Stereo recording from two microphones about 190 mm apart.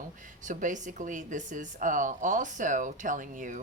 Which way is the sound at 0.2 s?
40° right (ahead or behind).